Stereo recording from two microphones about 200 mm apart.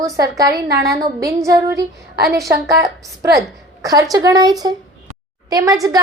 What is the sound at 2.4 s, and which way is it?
A woman's voice, 15° right (ahead or behind).